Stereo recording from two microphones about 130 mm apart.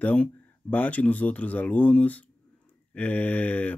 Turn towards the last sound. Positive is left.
turn(degrees=10)  # may be behind; listen again after turning